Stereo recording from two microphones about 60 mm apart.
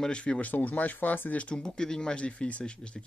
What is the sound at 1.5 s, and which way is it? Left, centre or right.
Speech, centre.